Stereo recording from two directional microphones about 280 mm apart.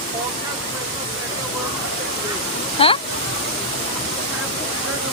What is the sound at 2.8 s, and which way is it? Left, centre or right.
Speech, centre.